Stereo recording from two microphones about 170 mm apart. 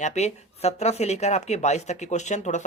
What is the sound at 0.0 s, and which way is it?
Speech, 40° left (ahead or behind).